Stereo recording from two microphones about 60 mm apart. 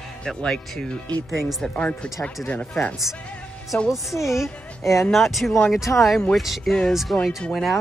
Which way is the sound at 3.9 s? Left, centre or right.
Centre.